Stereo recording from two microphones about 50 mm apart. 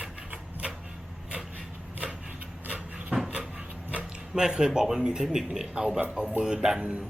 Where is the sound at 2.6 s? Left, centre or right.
Right.